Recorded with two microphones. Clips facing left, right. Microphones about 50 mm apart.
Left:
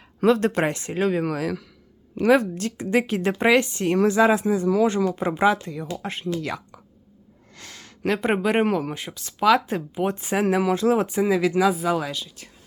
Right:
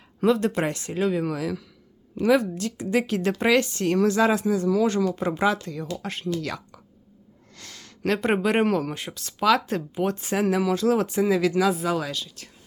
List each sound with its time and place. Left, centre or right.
0.3 s a man's voice: left
0.7 s speech: left
1.2 s a man's voice: left; by 6.7 s centre
7.5 s a sound: left
8.0 s speech: centre
10.4 s speech: left
11.1 s speech: centre